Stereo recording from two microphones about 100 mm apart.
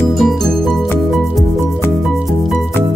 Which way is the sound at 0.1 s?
Centre (ahead or behind).